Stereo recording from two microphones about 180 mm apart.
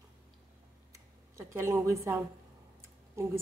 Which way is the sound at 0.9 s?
15° right (ahead or behind).